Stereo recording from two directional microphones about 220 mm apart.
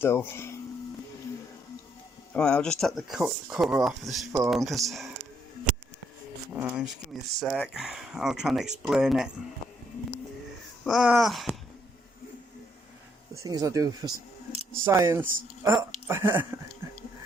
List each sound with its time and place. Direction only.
0.0 s speech: 10° left (ahead or behind)
2.3 s speech: 5° left (ahead or behind)
6.5 s speech: 5° right (ahead or behind)
10.8 s speech: centre (ahead or behind)
13.3 s speech: 15° right (ahead or behind)